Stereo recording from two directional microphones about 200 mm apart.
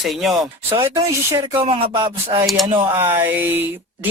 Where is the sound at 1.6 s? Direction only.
30° right (ahead or behind).